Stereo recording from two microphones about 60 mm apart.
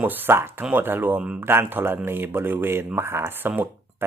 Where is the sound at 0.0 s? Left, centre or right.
Right.